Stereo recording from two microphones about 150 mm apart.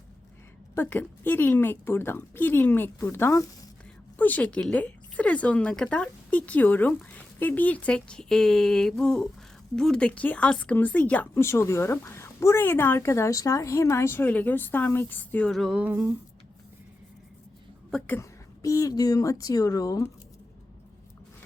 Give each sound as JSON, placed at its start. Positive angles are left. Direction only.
{"t": 0.8, "sound": "speech", "side_deg": 15}
{"t": 15.8, "sound": "a sound", "side_deg": -10}
{"t": 17.9, "sound": "a woman's voice", "side_deg": 10}